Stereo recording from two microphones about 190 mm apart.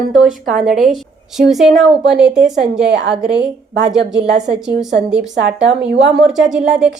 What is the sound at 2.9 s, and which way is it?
Speech, 65° right (ahead or behind).